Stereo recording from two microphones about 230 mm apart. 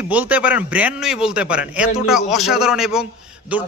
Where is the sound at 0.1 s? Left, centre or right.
Centre.